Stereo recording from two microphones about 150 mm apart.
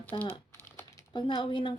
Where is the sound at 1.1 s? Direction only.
30° left (ahead or behind).